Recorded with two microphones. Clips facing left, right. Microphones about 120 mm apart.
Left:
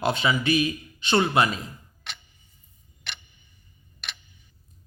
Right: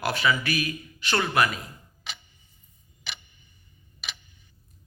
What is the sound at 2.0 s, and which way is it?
Tick-tock, centre (ahead or behind).